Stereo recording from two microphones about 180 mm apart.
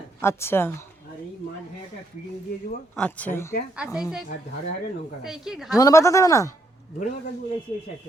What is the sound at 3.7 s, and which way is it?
Speech, 5° right (ahead or behind).